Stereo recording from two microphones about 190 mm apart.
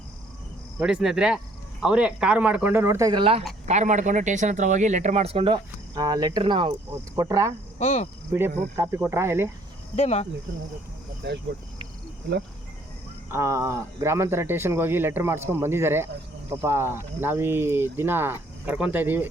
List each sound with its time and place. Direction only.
0.8 s speech: 5° right (ahead or behind); by 3.4 s 25° right (ahead or behind)
3.7 s speech: 40° right (ahead or behind); by 7.5 s 20° right (ahead or behind)
7.8 s speech: 35° left (ahead or behind)
8.3 s speech: 10° right (ahead or behind)
9.9 s speech: 35° left (ahead or behind)
11.2 s speech: 65° right (ahead or behind)
13.2 s speech: 15° right (ahead or behind)